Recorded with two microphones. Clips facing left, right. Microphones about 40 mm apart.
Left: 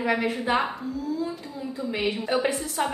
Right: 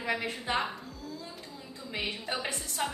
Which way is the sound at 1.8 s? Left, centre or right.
Centre.